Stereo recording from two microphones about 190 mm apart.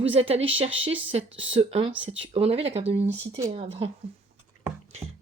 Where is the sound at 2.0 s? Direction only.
85° right.